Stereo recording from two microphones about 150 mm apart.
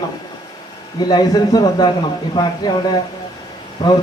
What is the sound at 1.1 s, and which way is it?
Speech, 25° left (ahead or behind).